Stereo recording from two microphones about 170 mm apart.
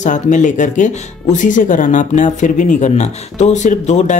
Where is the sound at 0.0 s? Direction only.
45° left (ahead or behind).